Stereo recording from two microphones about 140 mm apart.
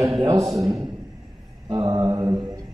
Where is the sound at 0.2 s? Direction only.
25° right (ahead or behind).